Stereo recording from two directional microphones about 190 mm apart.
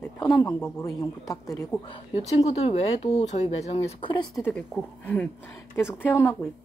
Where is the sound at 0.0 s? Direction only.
20° left (ahead or behind).